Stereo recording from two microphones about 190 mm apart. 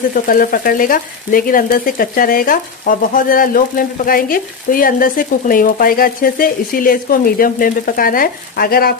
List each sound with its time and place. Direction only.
0.1 s speech: 45° left (ahead or behind)